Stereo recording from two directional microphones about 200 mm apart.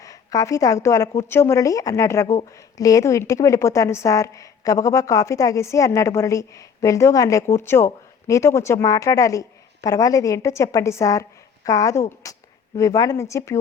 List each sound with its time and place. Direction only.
0.0 s a woman's voice: 15° left (ahead or behind)